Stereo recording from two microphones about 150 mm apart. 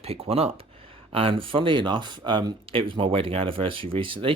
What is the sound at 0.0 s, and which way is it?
Speech, 40° right (ahead or behind).